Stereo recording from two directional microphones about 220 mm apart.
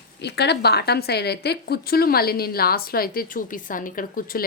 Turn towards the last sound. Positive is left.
turn(degrees=40)  # may be behind; listen again after turning